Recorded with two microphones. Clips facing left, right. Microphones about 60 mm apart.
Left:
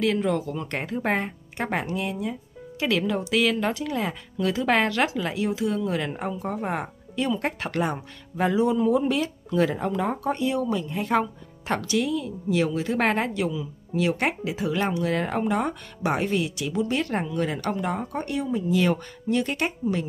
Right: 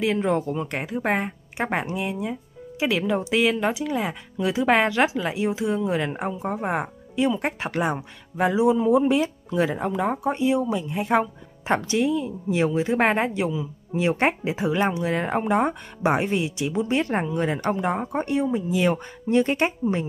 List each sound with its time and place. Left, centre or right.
0.0 s speech: right
0.7 s speech: centre
1.6 s speech: right